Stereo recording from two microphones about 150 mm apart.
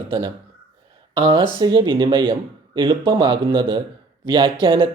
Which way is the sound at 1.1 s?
40° right (ahead or behind).